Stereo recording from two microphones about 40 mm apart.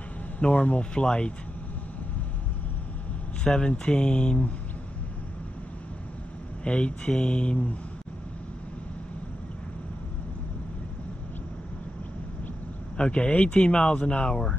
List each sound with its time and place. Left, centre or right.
0.4 s speech: left
3.4 s speech: left
6.6 s speech: left
12.9 s speech: left